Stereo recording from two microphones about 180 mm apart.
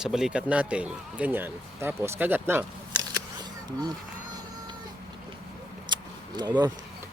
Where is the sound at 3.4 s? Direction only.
25° right (ahead or behind).